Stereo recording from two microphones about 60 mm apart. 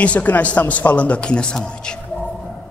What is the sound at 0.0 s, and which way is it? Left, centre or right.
A man's voice, left.